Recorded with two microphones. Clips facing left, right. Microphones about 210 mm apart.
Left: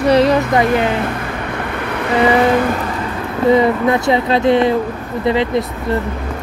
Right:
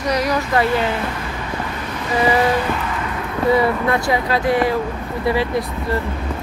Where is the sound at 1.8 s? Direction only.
65° left (ahead or behind).